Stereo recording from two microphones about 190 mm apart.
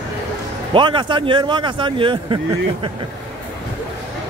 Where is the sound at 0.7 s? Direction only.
25° right (ahead or behind).